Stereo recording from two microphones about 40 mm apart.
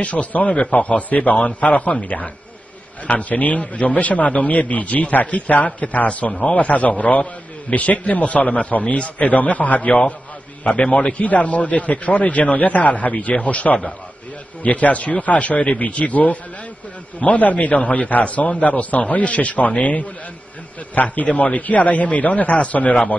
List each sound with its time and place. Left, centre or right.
0.0 s a man's voice: left
0.5 s a man's voice: left
0.7 s a man's voice: left
3.1 s a man's voice: left